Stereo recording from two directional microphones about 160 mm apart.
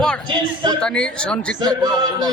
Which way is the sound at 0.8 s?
5° left (ahead or behind).